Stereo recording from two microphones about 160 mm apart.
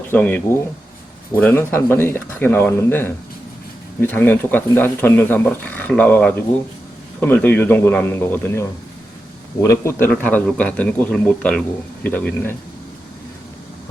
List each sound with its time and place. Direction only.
0.1 s speech: 10° left (ahead or behind)